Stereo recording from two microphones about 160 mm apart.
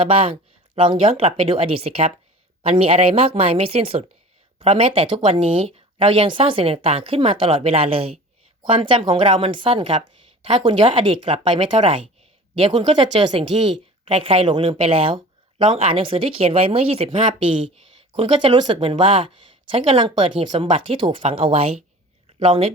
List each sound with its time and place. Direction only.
0.0 s speech: 35° right (ahead or behind)